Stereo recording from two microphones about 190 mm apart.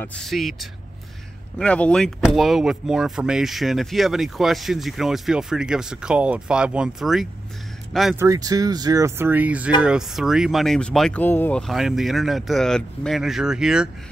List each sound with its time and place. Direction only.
0.0 s speech: 5° left (ahead or behind)
8.2 s speech: 20° right (ahead or behind)